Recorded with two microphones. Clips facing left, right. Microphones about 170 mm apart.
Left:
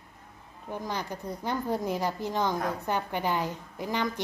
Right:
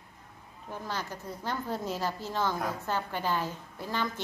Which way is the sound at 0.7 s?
15° left (ahead or behind).